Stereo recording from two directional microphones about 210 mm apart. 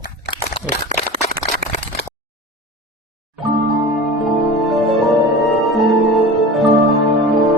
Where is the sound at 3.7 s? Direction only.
Centre (ahead or behind).